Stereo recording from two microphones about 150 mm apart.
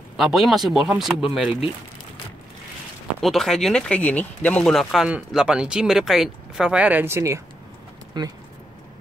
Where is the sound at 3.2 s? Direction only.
Centre (ahead or behind).